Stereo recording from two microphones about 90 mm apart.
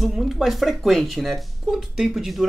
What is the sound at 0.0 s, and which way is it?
Speech, centre (ahead or behind).